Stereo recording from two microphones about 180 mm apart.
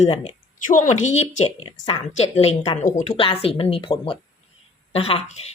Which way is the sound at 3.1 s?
30° left (ahead or behind).